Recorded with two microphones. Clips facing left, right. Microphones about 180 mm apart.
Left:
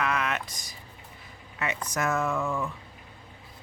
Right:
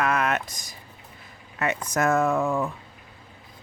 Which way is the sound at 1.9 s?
50° right (ahead or behind).